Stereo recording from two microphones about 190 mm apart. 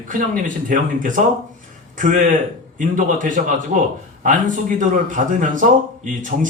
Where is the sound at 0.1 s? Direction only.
45° right (ahead or behind).